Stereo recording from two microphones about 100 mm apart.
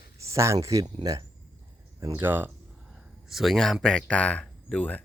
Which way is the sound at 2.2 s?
20° right (ahead or behind).